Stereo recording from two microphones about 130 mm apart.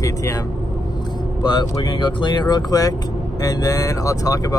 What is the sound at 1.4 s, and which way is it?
Speech, 35° left (ahead or behind).